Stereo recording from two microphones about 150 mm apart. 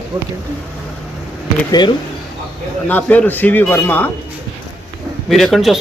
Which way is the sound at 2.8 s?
10° left (ahead or behind).